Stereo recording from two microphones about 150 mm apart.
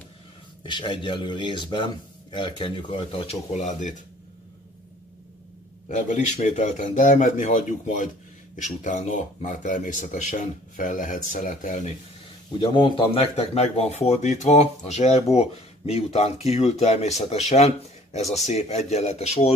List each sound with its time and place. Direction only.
0.7 s speech: 35° left (ahead or behind); by 4.0 s 55° left (ahead or behind)
5.9 s speech: 55° left (ahead or behind)
12.5 s speech: 35° left (ahead or behind)